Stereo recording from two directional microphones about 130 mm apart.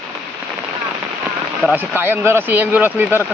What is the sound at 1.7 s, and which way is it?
Speech, 15° right (ahead or behind).